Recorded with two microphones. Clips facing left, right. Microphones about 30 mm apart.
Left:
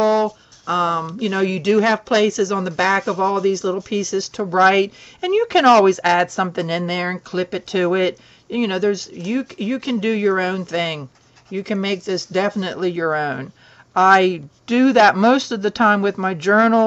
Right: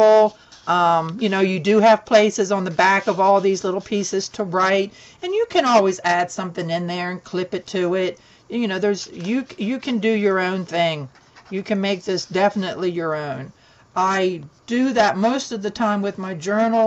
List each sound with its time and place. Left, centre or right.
0.0 s a sound: centre
1.2 s speech: centre
3.1 s speech: centre
4.4 s speech: centre
12.9 s speech: centre